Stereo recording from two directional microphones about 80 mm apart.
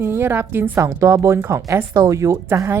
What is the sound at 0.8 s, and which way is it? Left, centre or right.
Speech, right.